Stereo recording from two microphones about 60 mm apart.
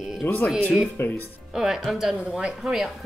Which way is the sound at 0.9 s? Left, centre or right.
Left.